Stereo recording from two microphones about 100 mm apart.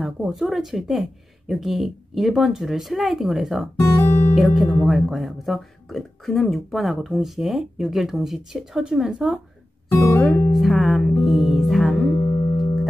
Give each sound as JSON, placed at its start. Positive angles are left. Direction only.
{"t": 0.0, "sound": "speech", "side_deg": 0}
{"t": 3.8, "sound": "guitar", "side_deg": 30}
{"t": 4.4, "sound": "speech", "side_deg": 0}
{"t": 9.9, "sound": "speech", "side_deg": 30}
{"t": 10.5, "sound": "speech", "side_deg": 0}